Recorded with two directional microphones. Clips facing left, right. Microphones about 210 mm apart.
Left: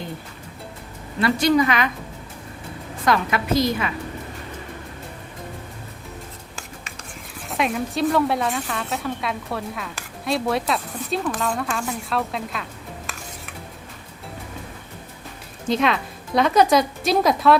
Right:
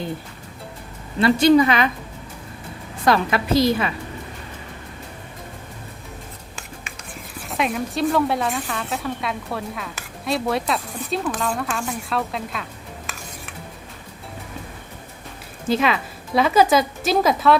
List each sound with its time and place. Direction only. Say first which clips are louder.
1.2 s a woman's voice: right 4 dB; 25° right (ahead or behind)
3.1 s a woman's voice: right 2 dB; 30° right (ahead or behind)
7.5 s a woman's voice: even; centre (ahead or behind)
15.6 s a woman's voice: right 1 dB; 5° right (ahead or behind)